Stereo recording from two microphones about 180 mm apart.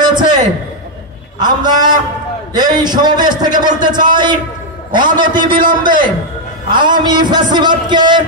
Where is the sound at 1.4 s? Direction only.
25° right (ahead or behind).